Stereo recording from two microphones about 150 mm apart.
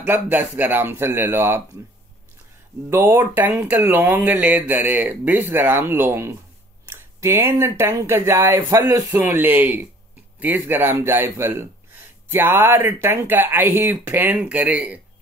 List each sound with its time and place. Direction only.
0.0 s speech: 10° right (ahead or behind)
2.9 s speech: 15° right (ahead or behind)